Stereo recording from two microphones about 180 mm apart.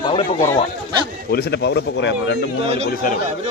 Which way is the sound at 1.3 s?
65° left (ahead or behind).